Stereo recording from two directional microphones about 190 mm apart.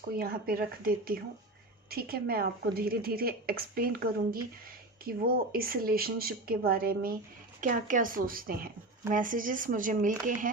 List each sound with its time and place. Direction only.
0.2 s a woman's voice: 50° right (ahead or behind)